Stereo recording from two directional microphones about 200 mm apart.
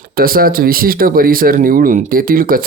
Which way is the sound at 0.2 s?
45° right (ahead or behind).